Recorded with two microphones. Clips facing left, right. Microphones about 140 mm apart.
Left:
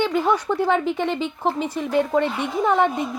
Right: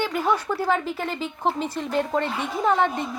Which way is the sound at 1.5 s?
10° left (ahead or behind).